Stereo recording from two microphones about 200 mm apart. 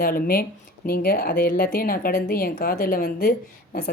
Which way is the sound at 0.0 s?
45° left (ahead or behind).